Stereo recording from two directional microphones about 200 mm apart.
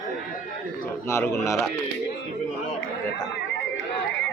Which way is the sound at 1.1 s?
15° left (ahead or behind).